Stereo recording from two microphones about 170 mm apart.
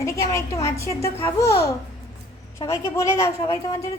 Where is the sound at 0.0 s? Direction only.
20° left (ahead or behind).